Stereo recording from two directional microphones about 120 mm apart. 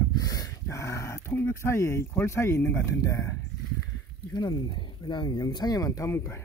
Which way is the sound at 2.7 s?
25° left (ahead or behind).